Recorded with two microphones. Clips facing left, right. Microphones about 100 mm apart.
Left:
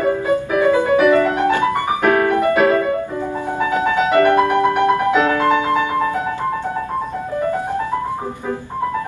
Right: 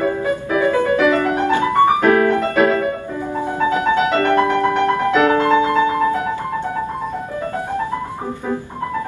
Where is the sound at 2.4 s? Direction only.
15° left (ahead or behind).